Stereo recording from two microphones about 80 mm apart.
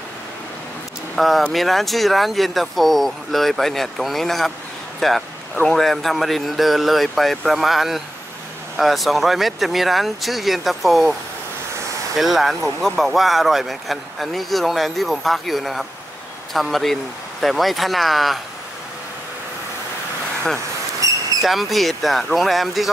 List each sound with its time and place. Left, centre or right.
1.1 s speech: centre
12.2 s speech: centre
20.5 s a sound: right
21.4 s speech: centre